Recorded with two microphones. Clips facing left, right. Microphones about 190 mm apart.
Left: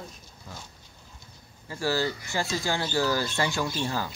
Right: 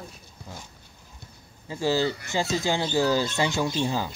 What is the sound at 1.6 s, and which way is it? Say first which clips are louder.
Speech: right 3 dB; 20° right (ahead or behind).